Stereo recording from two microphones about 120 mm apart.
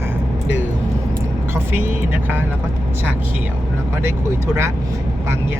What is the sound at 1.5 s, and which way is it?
Speech, 20° right (ahead or behind).